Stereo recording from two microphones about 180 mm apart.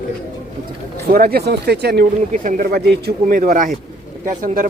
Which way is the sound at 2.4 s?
50° right (ahead or behind).